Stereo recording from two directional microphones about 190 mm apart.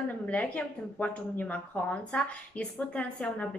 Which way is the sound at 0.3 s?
10° left (ahead or behind).